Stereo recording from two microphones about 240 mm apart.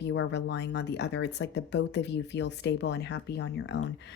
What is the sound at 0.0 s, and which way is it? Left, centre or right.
A woman's voice, left.